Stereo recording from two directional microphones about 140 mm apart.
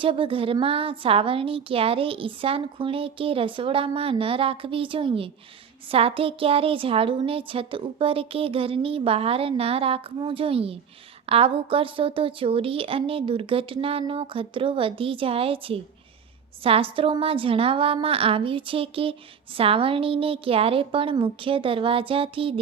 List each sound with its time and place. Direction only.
0.0 s a woman's voice: 40° right (ahead or behind)